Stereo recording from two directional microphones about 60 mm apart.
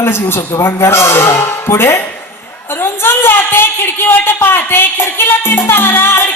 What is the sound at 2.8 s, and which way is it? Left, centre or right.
Speech, left.